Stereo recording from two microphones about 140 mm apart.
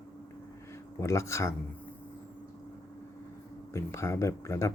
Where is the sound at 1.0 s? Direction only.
20° left (ahead or behind).